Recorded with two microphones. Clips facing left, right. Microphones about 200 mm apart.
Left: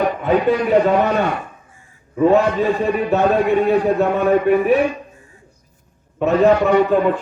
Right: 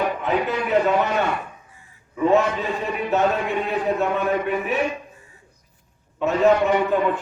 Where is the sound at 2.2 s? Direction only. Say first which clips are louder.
Left 4 dB; 35° left (ahead or behind).